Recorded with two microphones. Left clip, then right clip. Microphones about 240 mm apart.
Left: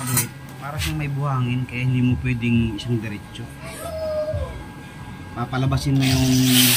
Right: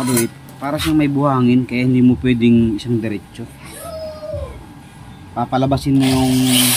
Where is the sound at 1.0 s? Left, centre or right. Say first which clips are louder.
Right 12 dB; right.